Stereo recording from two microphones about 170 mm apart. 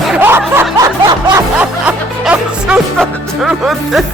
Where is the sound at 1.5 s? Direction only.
5° right (ahead or behind).